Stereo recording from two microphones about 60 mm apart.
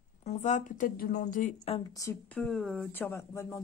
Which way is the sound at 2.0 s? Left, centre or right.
Left.